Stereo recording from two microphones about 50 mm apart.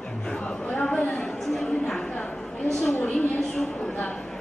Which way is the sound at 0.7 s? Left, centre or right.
Left.